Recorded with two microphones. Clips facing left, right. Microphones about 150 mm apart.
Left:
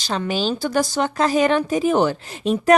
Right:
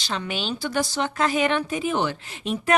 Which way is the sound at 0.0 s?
40° left (ahead or behind).